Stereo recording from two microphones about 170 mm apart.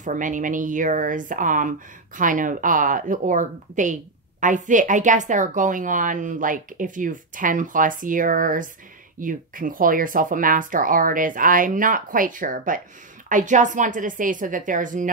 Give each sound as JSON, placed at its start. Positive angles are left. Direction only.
{"t": 0.0, "sound": "speech", "side_deg": -50}